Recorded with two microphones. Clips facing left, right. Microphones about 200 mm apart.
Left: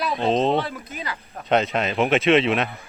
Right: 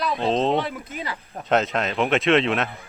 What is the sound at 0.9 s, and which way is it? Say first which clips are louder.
Speech: right 1 dB; 25° right (ahead or behind).